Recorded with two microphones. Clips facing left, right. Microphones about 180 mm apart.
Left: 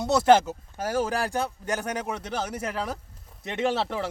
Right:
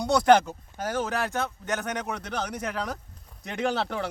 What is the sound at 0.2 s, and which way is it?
Speech, 5° left (ahead or behind).